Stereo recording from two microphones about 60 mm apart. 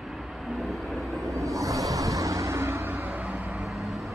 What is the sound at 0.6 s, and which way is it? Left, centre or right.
Vehicle, centre.